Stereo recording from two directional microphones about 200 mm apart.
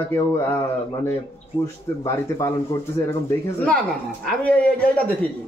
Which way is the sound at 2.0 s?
15° left (ahead or behind).